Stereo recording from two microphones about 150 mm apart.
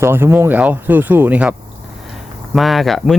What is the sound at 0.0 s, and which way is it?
Speech, 15° right (ahead or behind).